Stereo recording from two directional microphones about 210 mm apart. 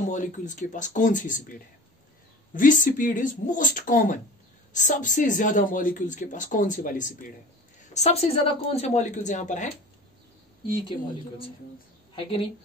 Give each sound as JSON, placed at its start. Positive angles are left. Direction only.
{"t": 0.1, "sound": "a woman's voice", "side_deg": 35}
{"t": 12.2, "sound": "a woman's voice", "side_deg": 25}